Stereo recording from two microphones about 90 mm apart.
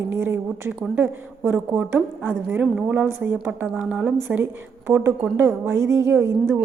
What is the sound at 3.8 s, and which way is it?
A woman's voice, 15° right (ahead or behind).